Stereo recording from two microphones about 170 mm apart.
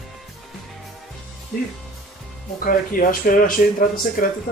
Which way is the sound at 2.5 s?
55° left (ahead or behind).